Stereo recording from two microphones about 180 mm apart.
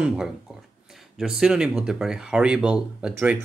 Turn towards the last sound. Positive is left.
turn(degrees=-5)  # may be behind; listen again after turning